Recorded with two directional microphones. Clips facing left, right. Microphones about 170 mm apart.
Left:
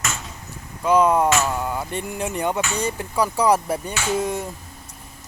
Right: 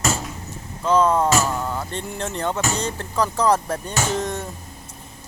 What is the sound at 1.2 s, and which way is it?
Music, 35° right (ahead or behind).